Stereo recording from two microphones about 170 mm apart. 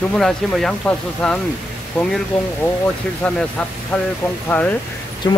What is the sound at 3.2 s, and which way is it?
Speech, 5° left (ahead or behind).